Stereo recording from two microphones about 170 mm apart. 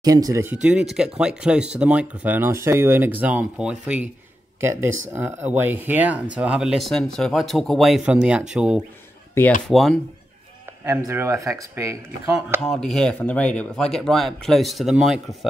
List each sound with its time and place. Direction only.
0.0 s speech: 20° right (ahead or behind)
0.6 s speech: 5° right (ahead or behind)
9.4 s speech: 15° left (ahead or behind)
9.7 s speech: centre (ahead or behind)
10.9 s speech: 15° right (ahead or behind)
12.6 s speech: centre (ahead or behind)